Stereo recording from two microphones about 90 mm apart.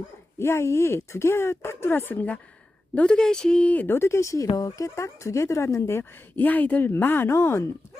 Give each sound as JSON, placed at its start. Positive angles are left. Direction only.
{"t": 0.3, "sound": "speech", "side_deg": 30}